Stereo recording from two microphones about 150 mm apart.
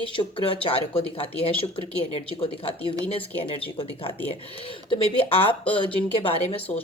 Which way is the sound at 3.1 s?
40° left (ahead or behind).